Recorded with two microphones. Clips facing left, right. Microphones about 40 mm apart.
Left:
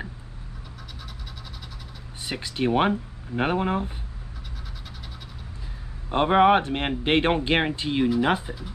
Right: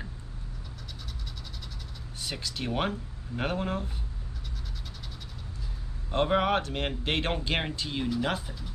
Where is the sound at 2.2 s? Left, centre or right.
Left.